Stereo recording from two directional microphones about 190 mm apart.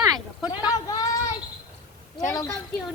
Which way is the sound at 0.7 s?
20° left (ahead or behind).